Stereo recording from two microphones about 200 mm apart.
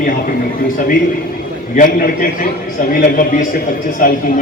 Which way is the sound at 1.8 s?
45° left (ahead or behind).